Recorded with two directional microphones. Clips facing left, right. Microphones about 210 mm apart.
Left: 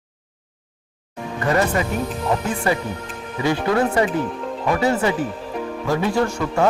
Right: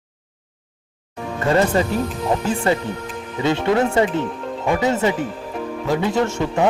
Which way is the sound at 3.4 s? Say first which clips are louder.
Right 1 dB; 25° right (ahead or behind).